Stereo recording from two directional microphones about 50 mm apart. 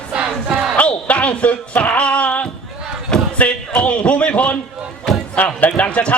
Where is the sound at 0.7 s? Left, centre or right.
Left.